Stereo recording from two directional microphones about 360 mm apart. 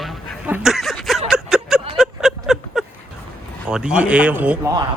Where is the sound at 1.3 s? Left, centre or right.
Centre.